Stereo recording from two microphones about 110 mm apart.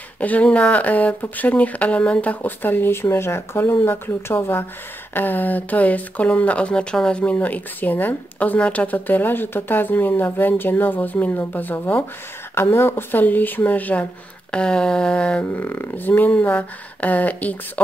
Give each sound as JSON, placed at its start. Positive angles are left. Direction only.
{"t": 0.2, "sound": "speech", "side_deg": 15}